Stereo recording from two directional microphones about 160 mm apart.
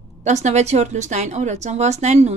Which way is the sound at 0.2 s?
45° right (ahead or behind).